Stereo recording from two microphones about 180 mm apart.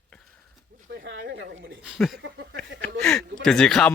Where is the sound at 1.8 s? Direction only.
5° right (ahead or behind).